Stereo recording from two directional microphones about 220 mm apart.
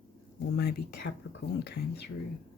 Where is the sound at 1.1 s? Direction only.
55° left (ahead or behind).